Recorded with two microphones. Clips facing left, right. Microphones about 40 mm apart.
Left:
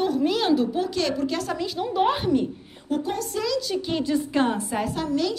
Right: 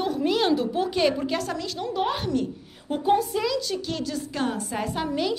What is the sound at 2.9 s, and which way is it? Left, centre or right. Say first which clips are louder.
Speech: right 4 dB; centre.